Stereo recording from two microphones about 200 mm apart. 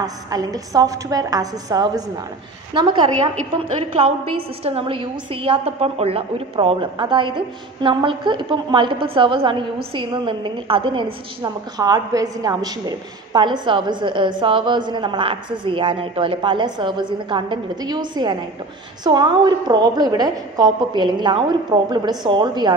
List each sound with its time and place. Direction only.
0.0 s a woman's voice: 20° right (ahead or behind)
4.6 s a woman's voice: 30° right (ahead or behind)